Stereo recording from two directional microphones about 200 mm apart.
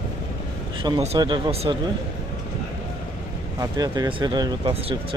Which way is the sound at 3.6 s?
20° right (ahead or behind).